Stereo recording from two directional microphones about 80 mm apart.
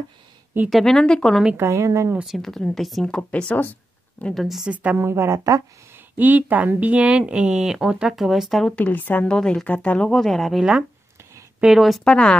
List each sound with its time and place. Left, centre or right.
0.7 s speech: centre
1.6 s speech: right
2.2 s speech: centre
4.3 s speech: centre
4.6 s a woman's voice: centre
6.1 s speech: right; by 8.7 s centre
8.7 s a woman's voice: left
9.3 s speech: centre
10.6 s speech: centre
12.0 s speech: centre